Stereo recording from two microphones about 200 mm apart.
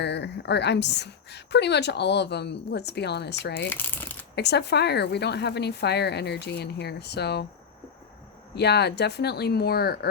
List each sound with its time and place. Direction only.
0.0 s a woman's voice: 60° left (ahead or behind)
3.7 s shuffling cards: 10° left (ahead or behind)
4.4 s a woman's voice: 55° left (ahead or behind)
8.5 s a woman's voice: 55° left (ahead or behind)